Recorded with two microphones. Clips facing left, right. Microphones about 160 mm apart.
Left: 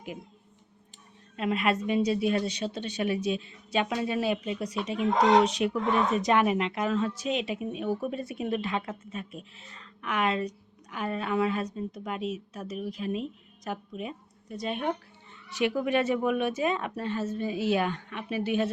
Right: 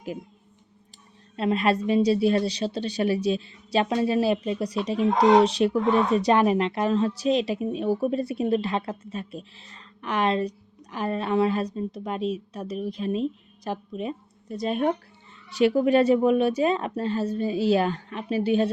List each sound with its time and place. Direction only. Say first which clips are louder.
1.4 s a woman's voice: right 4 dB; 35° right (ahead or behind)